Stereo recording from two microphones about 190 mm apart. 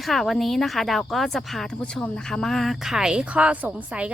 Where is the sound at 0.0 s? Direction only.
Centre (ahead or behind).